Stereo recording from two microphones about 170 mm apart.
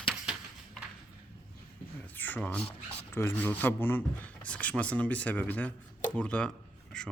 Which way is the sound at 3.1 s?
15° left (ahead or behind).